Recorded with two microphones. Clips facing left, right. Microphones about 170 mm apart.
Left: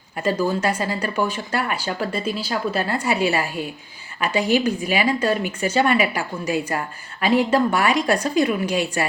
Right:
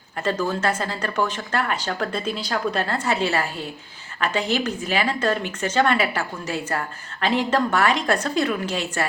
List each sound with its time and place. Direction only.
0.2 s speech: 10° left (ahead or behind)